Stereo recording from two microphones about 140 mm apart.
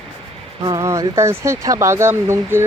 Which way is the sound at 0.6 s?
25° right (ahead or behind).